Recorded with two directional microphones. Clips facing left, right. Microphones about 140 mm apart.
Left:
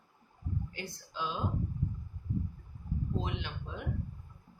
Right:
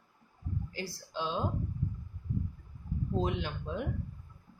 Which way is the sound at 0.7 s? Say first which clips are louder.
Right 4 dB; 30° right (ahead or behind).